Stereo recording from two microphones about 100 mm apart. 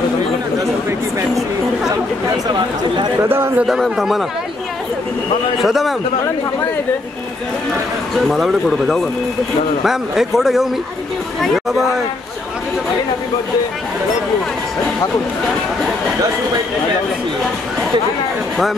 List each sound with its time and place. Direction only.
3.2 s speech: 25° right (ahead or behind)
3.6 s speech: 5° right (ahead or behind)
5.6 s speech: centre (ahead or behind)
8.1 s speech: centre (ahead or behind)